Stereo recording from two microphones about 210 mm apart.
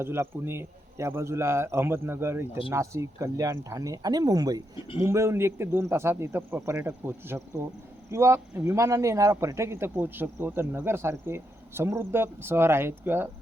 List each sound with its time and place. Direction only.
0.0 s speech: 10° right (ahead or behind)